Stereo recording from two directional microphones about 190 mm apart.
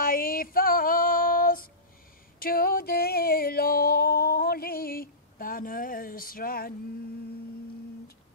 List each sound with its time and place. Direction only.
0.0 s female singing: 50° left (ahead or behind)
2.4 s music: 50° left (ahead or behind)